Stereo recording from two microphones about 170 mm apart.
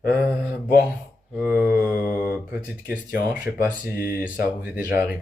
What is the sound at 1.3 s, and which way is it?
Mantra, 10° right (ahead or behind).